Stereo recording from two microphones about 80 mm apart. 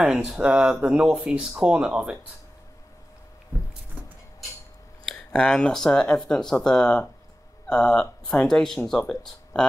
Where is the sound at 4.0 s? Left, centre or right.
Centre.